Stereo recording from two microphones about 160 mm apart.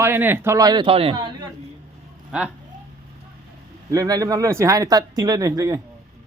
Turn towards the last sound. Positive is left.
turn(degrees=-20)  # may be behind; listen again after turning